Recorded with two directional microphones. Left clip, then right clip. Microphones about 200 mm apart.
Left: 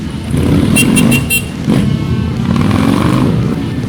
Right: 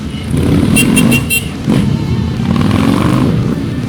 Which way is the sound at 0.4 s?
Centre (ahead or behind).